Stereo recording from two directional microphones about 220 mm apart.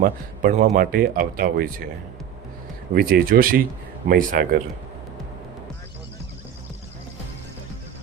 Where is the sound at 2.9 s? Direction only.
40° right (ahead or behind).